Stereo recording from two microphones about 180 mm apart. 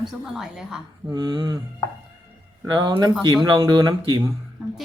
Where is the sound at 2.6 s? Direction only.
25° right (ahead or behind).